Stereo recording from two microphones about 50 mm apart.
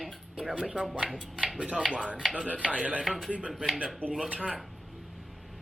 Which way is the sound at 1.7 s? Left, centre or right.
Right.